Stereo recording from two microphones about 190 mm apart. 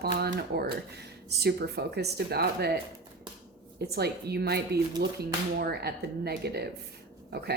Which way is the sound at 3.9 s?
55° right (ahead or behind).